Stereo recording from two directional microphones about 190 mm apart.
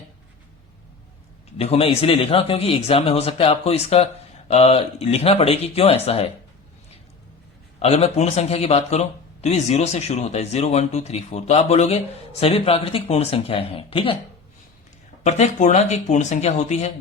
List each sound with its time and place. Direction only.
1.5 s speech: 30° left (ahead or behind)
7.8 s speech: 30° left (ahead or behind)
15.2 s speech: 35° left (ahead or behind)